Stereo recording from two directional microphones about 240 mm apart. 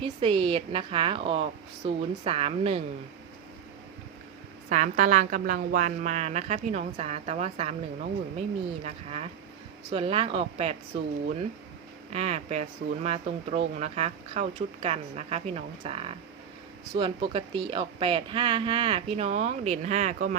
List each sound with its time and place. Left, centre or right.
0.0 s speech: right
4.7 s speech: right
12.1 s speech: right